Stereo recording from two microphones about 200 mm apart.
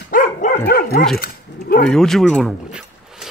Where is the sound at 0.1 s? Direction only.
45° left (ahead or behind).